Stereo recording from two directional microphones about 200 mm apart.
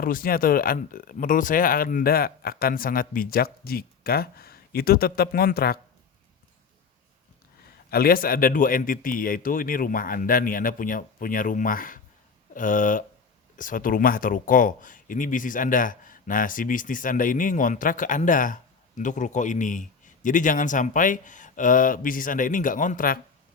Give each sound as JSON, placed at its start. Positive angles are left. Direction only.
{"t": 0.0, "sound": "speech", "side_deg": 45}
{"t": 7.9, "sound": "speech", "side_deg": 50}